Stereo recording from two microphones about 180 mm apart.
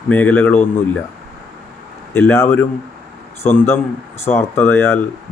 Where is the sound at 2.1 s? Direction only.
15° left (ahead or behind).